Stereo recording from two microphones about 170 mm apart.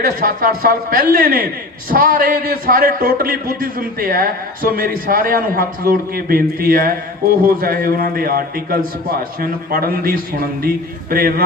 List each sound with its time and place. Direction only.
0.0 s a man's voice: 60° right (ahead or behind)